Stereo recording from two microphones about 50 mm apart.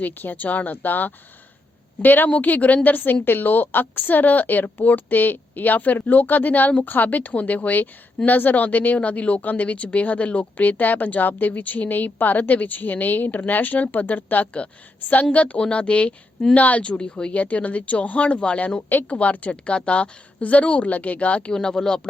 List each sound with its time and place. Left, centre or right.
0.0 s a woman's voice: left
21.5 s speech: centre